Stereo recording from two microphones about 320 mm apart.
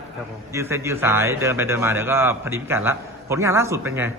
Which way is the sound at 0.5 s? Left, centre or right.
Centre.